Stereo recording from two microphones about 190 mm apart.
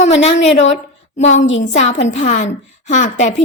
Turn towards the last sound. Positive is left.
turn(degrees=40)  # may be behind; listen again after turning